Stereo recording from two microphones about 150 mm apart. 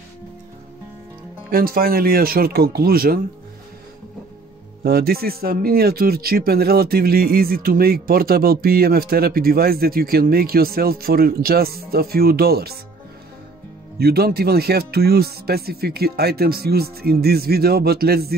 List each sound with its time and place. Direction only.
1.5 s speech: 80° right
4.8 s speech: 90° right
13.9 s speech: 90° right